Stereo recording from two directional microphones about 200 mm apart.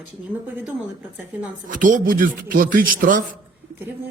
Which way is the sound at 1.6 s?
40° right (ahead or behind).